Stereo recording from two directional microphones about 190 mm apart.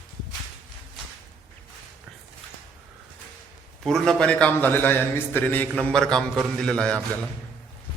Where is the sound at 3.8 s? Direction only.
5° left (ahead or behind).